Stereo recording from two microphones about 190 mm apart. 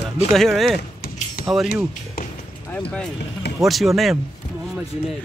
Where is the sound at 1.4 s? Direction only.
50° left (ahead or behind).